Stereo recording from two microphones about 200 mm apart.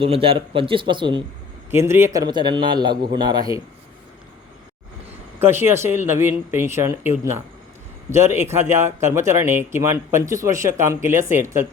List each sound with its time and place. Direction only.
0.0 s a man's voice: 30° right (ahead or behind)
1.7 s a man's voice: 10° right (ahead or behind)
5.4 s speech: 10° right (ahead or behind)
8.1 s speech: 15° right (ahead or behind)